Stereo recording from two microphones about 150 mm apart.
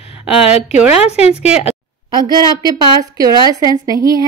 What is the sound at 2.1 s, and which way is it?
A woman's voice, 30° right (ahead or behind).